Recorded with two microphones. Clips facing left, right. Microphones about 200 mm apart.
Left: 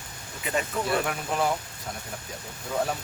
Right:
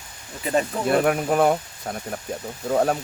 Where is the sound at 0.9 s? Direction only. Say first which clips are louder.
Right 8 dB; 55° right (ahead or behind).